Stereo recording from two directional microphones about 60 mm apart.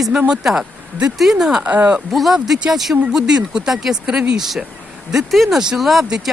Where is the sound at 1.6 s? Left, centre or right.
Right.